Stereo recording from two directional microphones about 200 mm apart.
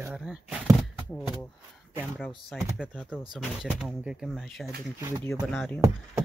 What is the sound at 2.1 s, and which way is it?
Speech, centre (ahead or behind).